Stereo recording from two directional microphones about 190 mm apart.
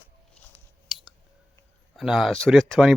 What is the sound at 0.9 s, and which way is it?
Clicking, centre (ahead or behind).